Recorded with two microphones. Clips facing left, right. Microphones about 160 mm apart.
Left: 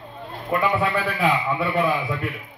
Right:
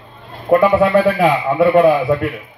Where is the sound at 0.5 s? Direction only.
40° right (ahead or behind).